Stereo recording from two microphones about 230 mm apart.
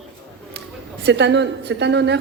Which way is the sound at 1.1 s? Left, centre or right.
Right.